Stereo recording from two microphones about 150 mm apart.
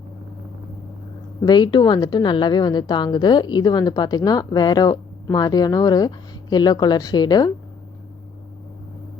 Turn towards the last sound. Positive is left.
turn(degrees=25)  # may be behind; listen again after turning